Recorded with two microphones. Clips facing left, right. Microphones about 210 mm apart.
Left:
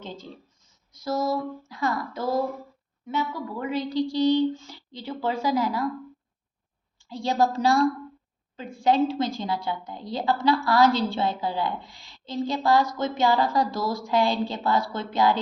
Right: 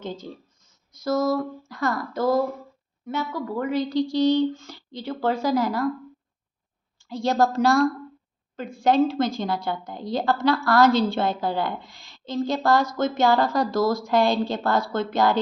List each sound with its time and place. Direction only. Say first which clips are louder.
1.0 s a woman's voice: right 4 dB; 45° right (ahead or behind)
7.1 s a woman's voice: right 2 dB; 45° right (ahead or behind)